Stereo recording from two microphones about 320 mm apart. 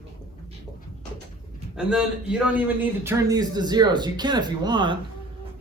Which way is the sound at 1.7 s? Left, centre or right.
Centre.